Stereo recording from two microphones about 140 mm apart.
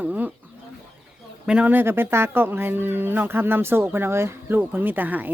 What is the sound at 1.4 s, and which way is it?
Speech, 5° right (ahead or behind).